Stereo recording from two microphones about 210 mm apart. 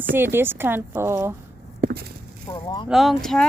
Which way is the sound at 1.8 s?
45° right (ahead or behind).